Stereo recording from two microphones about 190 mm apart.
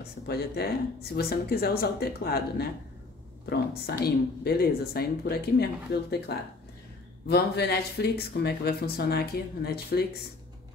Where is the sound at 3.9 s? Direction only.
55° left (ahead or behind).